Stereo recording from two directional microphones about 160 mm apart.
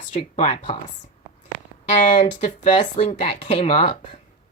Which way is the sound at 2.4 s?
50° left (ahead or behind).